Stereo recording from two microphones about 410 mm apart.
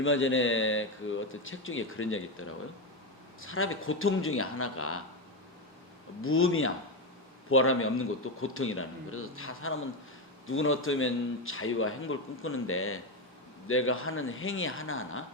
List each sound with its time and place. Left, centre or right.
0.0 s a man's voice: left
3.4 s a man's voice: left
6.2 s a man's voice: left